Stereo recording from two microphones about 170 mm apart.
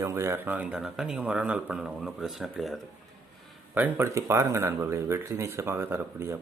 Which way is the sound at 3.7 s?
15° right (ahead or behind).